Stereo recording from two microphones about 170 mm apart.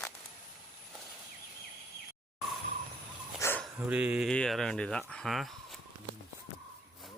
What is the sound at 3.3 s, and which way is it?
Dog, 15° left (ahead or behind).